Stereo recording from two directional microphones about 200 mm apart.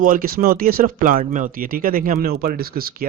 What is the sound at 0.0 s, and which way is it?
A man's voice, 45° right (ahead or behind).